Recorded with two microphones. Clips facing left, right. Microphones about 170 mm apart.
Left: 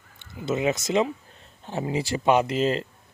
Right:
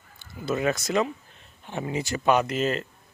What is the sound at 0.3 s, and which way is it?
Speech, 20° left (ahead or behind).